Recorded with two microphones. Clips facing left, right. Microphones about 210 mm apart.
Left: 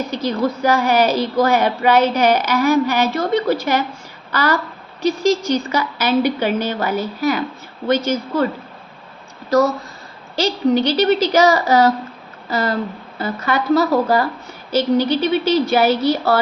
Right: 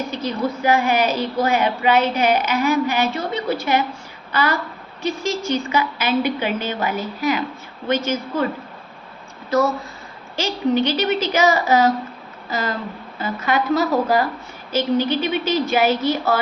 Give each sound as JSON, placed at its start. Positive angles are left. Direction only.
{"t": 0.1, "sound": "speech", "side_deg": 40}
{"t": 9.5, "sound": "speech", "side_deg": 40}